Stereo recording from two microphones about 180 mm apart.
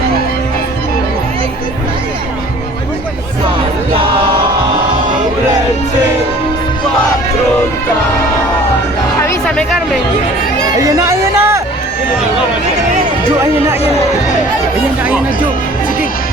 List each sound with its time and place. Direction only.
10.8 s music: 15° right (ahead or behind)